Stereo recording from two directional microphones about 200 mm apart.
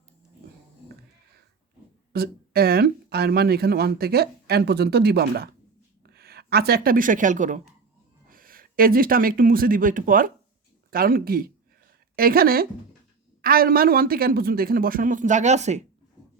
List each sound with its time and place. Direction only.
2.1 s a woman's voice: 50° right (ahead or behind); by 15.8 s 35° right (ahead or behind)